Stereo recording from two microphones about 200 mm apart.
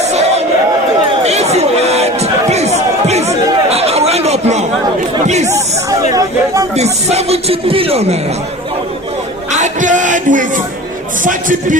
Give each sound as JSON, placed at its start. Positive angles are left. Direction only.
{"t": 0.0, "sound": "a sound", "side_deg": -35}
{"t": 5.2, "sound": "chatter", "side_deg": -35}
{"t": 6.1, "sound": "a sound", "side_deg": -15}
{"t": 6.7, "sound": "speech", "side_deg": -30}
{"t": 9.5, "sound": "music", "side_deg": -40}
{"t": 11.2, "sound": "speech", "side_deg": -40}